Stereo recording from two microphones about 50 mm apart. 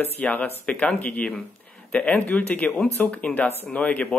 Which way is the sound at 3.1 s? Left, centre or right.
Left.